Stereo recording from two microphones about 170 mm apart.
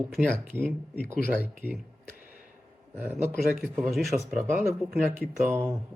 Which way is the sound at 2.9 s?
10° right (ahead or behind).